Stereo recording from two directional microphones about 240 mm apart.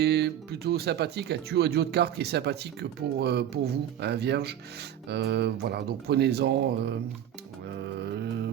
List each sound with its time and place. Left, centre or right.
0.0 s speech: right
7.9 s music: right